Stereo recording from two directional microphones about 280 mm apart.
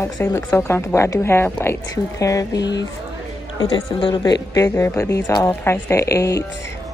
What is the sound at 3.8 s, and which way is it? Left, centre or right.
A woman's voice, centre.